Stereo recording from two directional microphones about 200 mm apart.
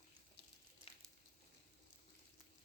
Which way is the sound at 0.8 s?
25° right (ahead or behind).